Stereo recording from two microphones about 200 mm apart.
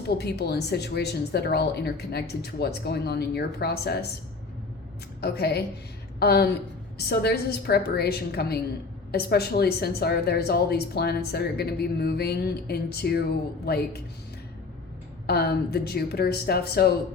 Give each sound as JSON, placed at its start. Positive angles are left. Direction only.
{"t": 0.1, "sound": "a woman's voice", "side_deg": 55}
{"t": 5.2, "sound": "speech", "side_deg": 55}
{"t": 15.3, "sound": "speech", "side_deg": 50}